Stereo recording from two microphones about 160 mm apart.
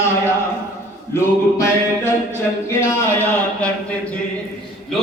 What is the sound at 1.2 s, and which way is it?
Speech, 15° left (ahead or behind).